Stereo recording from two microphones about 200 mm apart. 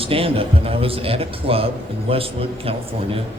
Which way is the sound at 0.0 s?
30° right (ahead or behind).